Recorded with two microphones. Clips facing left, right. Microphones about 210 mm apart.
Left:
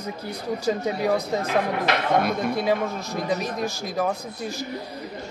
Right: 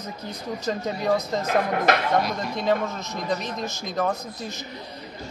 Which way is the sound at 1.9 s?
45° right (ahead or behind).